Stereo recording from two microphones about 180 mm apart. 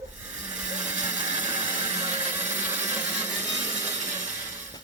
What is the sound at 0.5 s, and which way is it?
Blender, 5° right (ahead or behind).